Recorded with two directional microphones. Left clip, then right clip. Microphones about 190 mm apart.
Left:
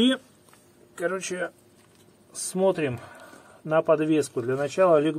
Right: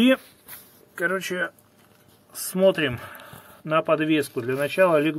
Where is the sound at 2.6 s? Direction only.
30° right (ahead or behind).